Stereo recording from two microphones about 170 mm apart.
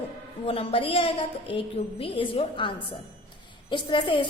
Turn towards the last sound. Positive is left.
turn(degrees=30)  # may be behind; listen again after turning